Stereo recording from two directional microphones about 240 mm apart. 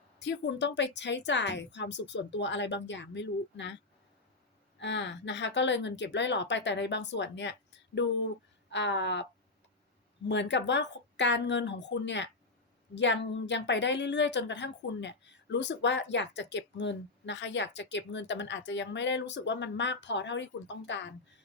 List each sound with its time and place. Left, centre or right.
0.2 s a woman's voice: left
4.8 s a woman's voice: left
10.2 s a woman's voice: left